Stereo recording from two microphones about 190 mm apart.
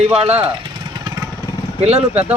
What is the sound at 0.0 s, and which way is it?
Speech, 35° right (ahead or behind).